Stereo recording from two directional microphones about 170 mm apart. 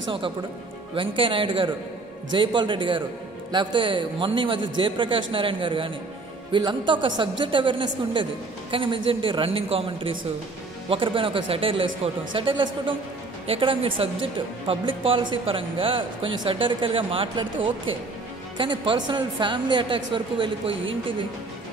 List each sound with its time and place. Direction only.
0.9 s a man's voice: 30° right (ahead or behind)